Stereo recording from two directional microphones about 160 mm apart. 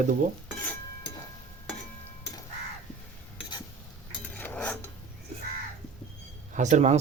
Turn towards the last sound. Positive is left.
turn(degrees=-45)  # may be behind; listen again after turning